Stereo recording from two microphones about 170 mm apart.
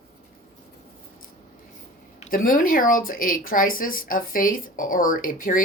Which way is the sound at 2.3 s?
55° left (ahead or behind).